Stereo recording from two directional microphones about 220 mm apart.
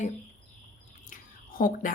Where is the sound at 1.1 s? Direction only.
40° left (ahead or behind).